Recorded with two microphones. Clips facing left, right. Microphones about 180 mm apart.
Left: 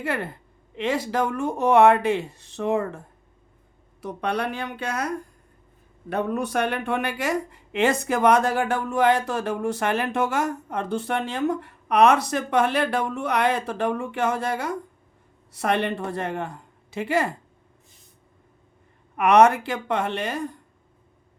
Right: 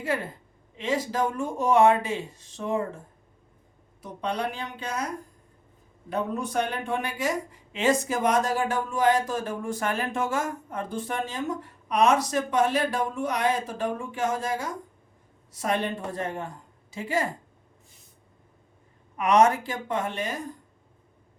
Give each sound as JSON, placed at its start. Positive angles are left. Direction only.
{"t": 0.0, "sound": "speech", "side_deg": 65}
{"t": 4.0, "sound": "speech", "side_deg": 70}
{"t": 6.1, "sound": "speech", "side_deg": 70}
{"t": 19.1, "sound": "speech", "side_deg": 65}